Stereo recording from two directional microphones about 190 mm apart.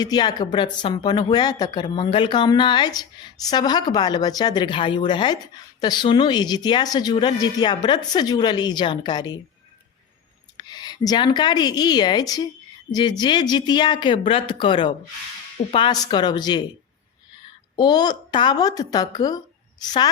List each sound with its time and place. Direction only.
0.0 s speech: 20° left (ahead or behind)
10.6 s speech: 20° left (ahead or behind)
17.7 s speech: 20° left (ahead or behind)